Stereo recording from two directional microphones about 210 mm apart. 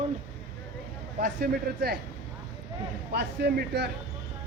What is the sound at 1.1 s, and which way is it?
Speech, 45° right (ahead or behind).